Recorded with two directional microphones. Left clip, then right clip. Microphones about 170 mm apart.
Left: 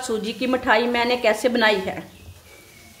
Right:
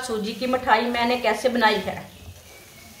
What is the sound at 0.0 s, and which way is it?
A woman's voice, 65° left (ahead or behind).